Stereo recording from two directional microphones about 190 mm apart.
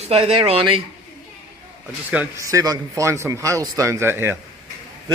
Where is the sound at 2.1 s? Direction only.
5° right (ahead or behind).